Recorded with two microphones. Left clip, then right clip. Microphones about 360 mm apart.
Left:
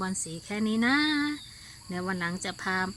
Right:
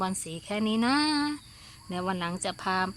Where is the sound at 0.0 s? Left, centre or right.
Centre.